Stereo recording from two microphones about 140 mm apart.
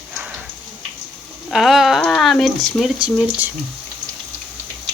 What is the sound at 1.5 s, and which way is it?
Speech, centre (ahead or behind).